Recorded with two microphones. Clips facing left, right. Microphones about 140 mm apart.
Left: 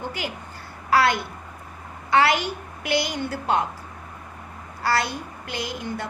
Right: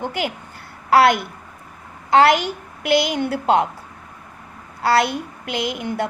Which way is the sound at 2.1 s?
50° right (ahead or behind).